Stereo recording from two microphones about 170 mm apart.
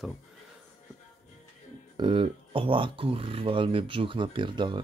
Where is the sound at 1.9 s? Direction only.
30° right (ahead or behind).